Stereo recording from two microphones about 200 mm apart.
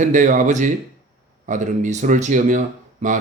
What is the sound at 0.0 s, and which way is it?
Speech, 40° right (ahead or behind).